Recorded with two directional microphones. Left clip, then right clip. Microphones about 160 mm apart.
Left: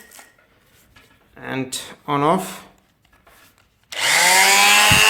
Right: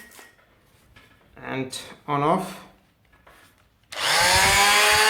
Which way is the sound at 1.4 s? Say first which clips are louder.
Left 4 dB; 30° left (ahead or behind).